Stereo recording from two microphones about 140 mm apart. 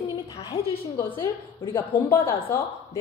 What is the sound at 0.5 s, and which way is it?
Speech, 35° left (ahead or behind).